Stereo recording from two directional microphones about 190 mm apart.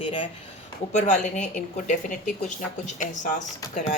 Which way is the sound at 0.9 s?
40° left (ahead or behind).